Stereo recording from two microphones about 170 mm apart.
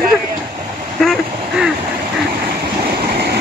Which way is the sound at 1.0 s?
Centre (ahead or behind).